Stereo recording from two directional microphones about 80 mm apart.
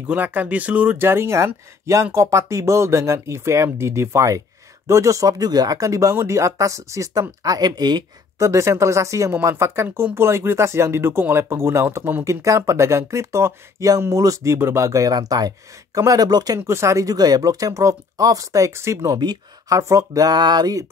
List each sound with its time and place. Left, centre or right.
0.0 s speech: right
8.4 s speech: right
12.3 s speech: right
16.5 s speech: right